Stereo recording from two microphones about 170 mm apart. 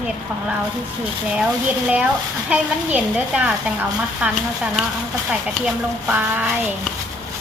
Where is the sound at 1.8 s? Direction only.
5° right (ahead or behind).